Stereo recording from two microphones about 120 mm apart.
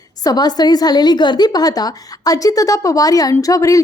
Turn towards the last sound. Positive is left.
turn(degrees=30)  # may be behind; listen again after turning